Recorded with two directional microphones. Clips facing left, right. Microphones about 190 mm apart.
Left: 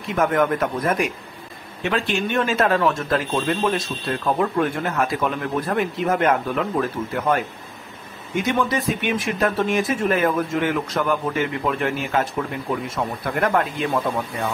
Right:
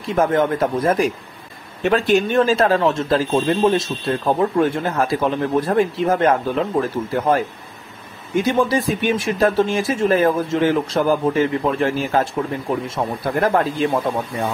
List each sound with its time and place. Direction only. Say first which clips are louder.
0.0 s a man's voice: right 3 dB; 30° right (ahead or behind)